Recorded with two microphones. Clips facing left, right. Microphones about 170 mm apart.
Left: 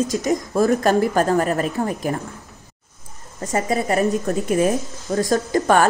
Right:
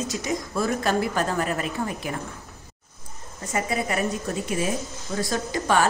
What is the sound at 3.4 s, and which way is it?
Speech, 40° left (ahead or behind).